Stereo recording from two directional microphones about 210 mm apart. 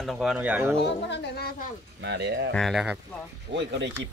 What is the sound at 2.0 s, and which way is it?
Speech, 55° right (ahead or behind).